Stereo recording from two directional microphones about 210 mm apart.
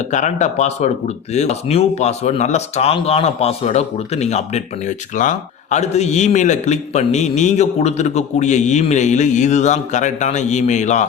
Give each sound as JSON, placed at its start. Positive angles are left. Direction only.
{"t": 0.0, "sound": "speech", "side_deg": 35}